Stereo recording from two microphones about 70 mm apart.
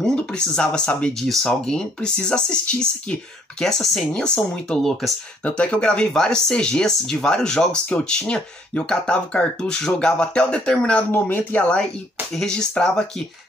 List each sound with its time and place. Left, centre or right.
0.0 s speech: centre
5.4 s speech: centre
11.1 s speech: left; by 13.0 s centre